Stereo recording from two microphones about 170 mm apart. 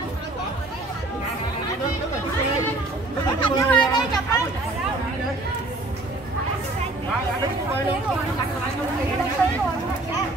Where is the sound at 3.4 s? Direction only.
25° left (ahead or behind).